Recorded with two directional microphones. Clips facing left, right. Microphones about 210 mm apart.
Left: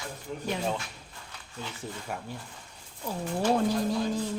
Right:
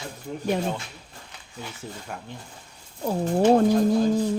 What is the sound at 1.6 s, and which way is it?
Speech, centre (ahead or behind).